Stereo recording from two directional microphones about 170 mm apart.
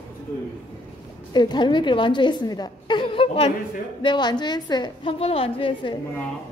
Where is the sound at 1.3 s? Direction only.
25° left (ahead or behind).